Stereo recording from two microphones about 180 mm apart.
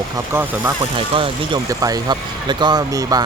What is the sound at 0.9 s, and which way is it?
Speech, 30° right (ahead or behind).